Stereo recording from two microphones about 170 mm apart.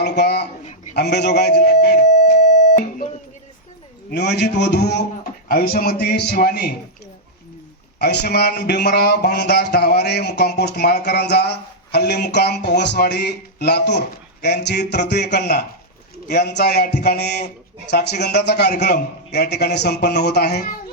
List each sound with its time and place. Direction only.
0.0 s speech: 75° left (ahead or behind)
0.9 s a sound: 85° left
2.4 s music: 45° left (ahead or behind)
4.1 s speech: 80° left
5.5 s a man's voice: 60° left (ahead or behind)
7.9 s a sound: 75° left (ahead or behind)
12.3 s speech: 75° left (ahead or behind)
16.2 s a sound: 75° left (ahead or behind)
20.6 s speech: 55° left (ahead or behind)